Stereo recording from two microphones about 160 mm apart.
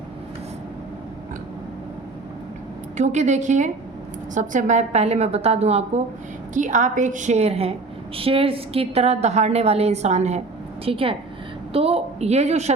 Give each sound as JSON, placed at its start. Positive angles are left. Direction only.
{"t": 3.0, "sound": "a woman's voice", "side_deg": -50}